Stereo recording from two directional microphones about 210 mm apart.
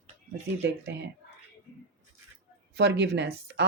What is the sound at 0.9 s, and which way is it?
Speech, 55° right (ahead or behind).